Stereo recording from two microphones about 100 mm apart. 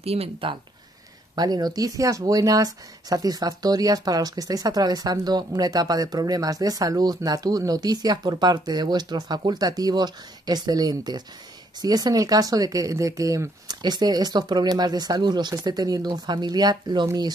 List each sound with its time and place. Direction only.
0.0 s speech: 85° right
1.3 s speech: 45° right (ahead or behind)